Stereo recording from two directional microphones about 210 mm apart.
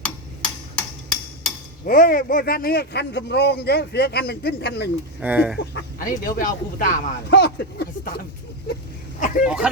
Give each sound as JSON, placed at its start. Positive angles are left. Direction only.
{"t": 0.0, "sound": "a sound", "side_deg": 5}
{"t": 1.9, "sound": "speech", "side_deg": 45}
{"t": 5.2, "sound": "speech", "side_deg": -5}
{"t": 6.0, "sound": "speech", "side_deg": 40}
{"t": 9.4, "sound": "speech", "side_deg": -5}